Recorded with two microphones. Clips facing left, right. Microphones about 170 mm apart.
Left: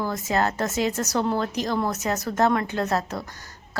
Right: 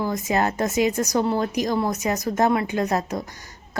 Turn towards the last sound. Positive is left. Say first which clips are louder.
# right 2 dB
turn(degrees=-15)  # may be behind; listen again after turning